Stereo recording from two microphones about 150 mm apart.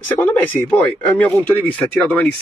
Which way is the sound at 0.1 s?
10° left (ahead or behind).